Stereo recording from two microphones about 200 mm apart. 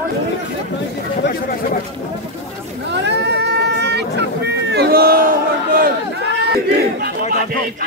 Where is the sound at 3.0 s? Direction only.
60° right (ahead or behind).